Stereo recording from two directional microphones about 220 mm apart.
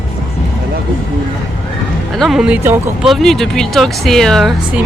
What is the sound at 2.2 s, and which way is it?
Speech, centre (ahead or behind).